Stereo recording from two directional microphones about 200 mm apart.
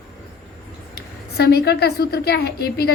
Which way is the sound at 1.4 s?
55° left (ahead or behind).